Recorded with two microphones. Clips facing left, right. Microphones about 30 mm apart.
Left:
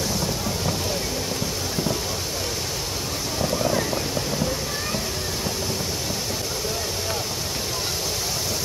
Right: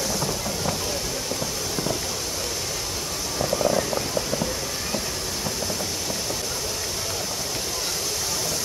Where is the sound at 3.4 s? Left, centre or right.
Centre.